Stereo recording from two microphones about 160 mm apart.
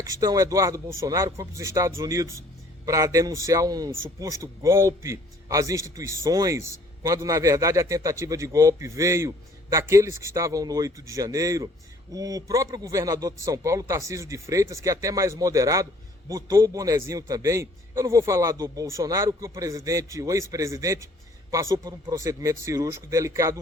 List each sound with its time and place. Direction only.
0.0 s a man's voice: 20° right (ahead or behind)